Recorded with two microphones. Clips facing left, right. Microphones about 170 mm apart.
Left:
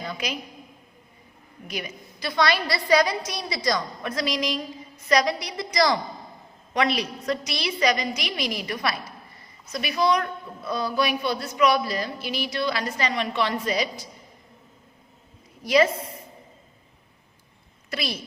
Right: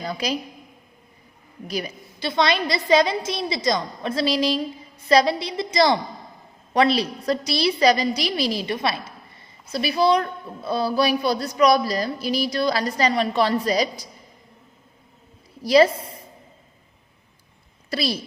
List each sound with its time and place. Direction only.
0.0 s a woman's voice: 35° right (ahead or behind)
1.6 s a woman's voice: 35° right (ahead or behind)
15.6 s a woman's voice: 35° right (ahead or behind)
17.9 s a woman's voice: 35° right (ahead or behind)